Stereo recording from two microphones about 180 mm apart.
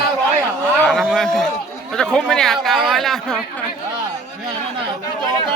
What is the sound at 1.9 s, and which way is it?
Speech, 5° left (ahead or behind).